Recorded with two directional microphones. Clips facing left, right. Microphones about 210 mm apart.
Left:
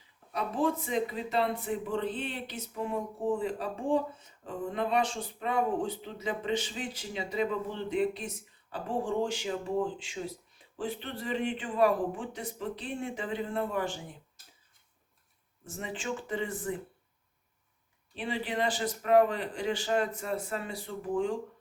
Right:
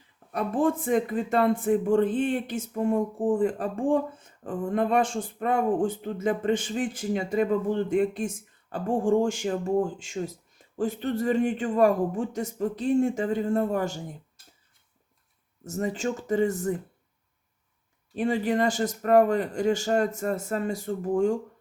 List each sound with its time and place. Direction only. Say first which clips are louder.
0.3 s speech: right 5 dB; 50° right (ahead or behind)
15.6 s speech: right 9 dB; 40° right (ahead or behind)
18.1 s speech: right 9 dB; 45° right (ahead or behind)